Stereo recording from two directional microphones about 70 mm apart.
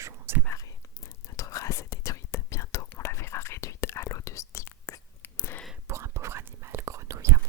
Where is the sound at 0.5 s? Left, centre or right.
Left.